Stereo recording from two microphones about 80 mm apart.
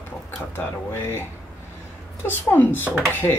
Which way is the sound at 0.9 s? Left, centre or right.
Left.